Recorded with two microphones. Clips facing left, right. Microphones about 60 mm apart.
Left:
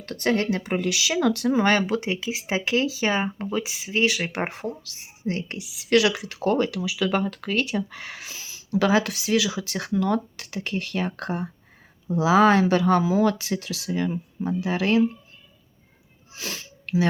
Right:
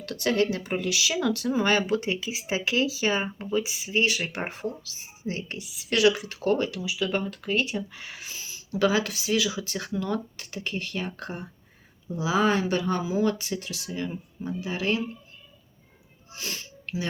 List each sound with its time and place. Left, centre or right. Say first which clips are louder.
0.0 s speech: left 1 dB; left
2.2 s speech: left 2 dB; left
3.7 s speech: left 2 dB; left
4.6 s speech: left 1 dB; left
6.8 s speech: left 4 dB; left
12.1 s speech: left 6 dB; left
16.8 s a sound: left 9 dB; left